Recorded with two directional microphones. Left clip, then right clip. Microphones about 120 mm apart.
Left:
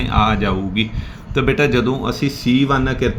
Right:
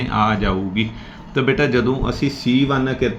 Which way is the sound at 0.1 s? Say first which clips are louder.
Left 1 dB; 30° left (ahead or behind).